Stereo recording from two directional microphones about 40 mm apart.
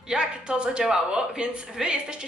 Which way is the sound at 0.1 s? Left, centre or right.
Right.